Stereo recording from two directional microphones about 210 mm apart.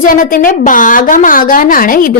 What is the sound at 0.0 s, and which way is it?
A woman's voice, 40° left (ahead or behind).